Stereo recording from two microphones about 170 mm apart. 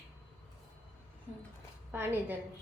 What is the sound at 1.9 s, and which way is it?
Speech, 10° right (ahead or behind).